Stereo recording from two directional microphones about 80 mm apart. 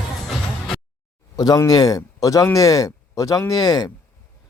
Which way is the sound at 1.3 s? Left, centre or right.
Left.